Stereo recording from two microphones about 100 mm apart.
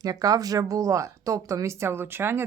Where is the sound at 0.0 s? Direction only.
35° right (ahead or behind).